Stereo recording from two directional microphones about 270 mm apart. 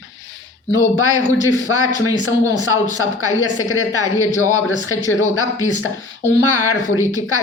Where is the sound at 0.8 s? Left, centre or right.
Left.